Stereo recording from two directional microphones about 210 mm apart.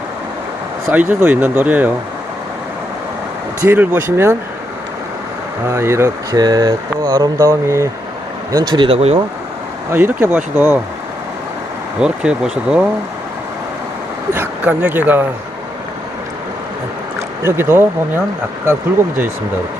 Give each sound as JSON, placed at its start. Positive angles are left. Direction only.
{"t": 0.9, "sound": "speech", "side_deg": -10}
{"t": 3.6, "sound": "speech", "side_deg": -10}
{"t": 5.6, "sound": "speech", "side_deg": -15}
{"t": 9.9, "sound": "speech", "side_deg": -10}
{"t": 11.9, "sound": "speech", "side_deg": -5}
{"t": 14.3, "sound": "speech", "side_deg": -10}
{"t": 17.4, "sound": "speech", "side_deg": -10}